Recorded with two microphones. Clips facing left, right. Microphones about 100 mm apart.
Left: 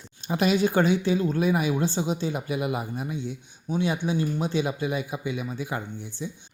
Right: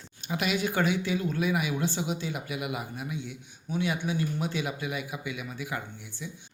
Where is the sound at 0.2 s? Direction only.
35° left (ahead or behind).